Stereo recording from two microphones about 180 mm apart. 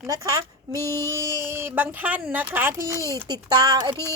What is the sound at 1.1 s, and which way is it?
Speech, 15° right (ahead or behind).